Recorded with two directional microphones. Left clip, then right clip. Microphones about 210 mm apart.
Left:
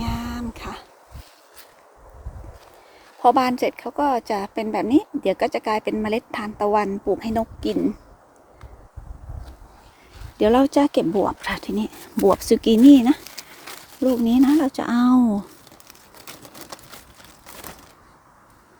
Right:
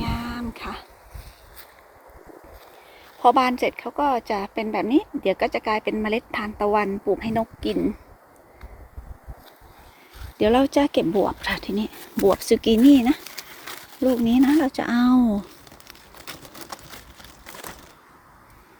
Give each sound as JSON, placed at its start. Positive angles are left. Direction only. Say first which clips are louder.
{"t": 0.0, "sound": "a sound", "louder": "even", "side_deg": 15}
{"t": 3.2, "sound": "a woman's voice", "louder": "even", "side_deg": 20}
{"t": 10.3, "sound": "a woman's voice", "louder": "left 2 dB", "side_deg": 20}
{"t": 11.1, "sound": "a woman's voice", "louder": "even", "side_deg": 0}
{"t": 13.2, "sound": "speech", "louder": "right 1 dB", "side_deg": 0}